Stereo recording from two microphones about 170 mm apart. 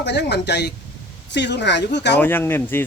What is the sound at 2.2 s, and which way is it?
Speech, 10° left (ahead or behind).